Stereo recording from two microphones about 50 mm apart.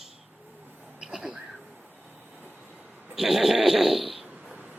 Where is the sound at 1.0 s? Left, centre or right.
Centre.